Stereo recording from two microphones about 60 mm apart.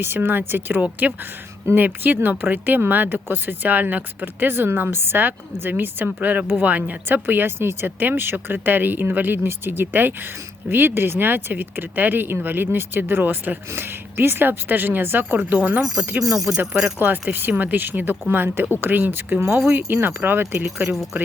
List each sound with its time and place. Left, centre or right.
0.0 s speech: right
15.4 s speech: right
16.2 s speech: centre
17.0 s speech: right
20.9 s speech: centre